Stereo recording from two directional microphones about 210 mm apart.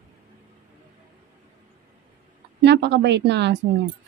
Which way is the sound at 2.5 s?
55° right (ahead or behind).